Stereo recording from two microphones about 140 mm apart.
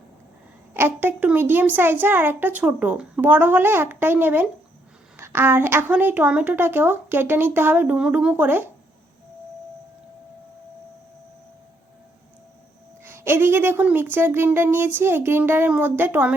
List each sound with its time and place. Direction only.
0.7 s a woman's voice: 15° right (ahead or behind)
13.1 s a woman's voice: 15° right (ahead or behind)